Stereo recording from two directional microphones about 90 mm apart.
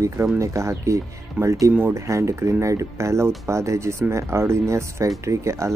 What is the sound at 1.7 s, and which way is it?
Speech, 15° right (ahead or behind).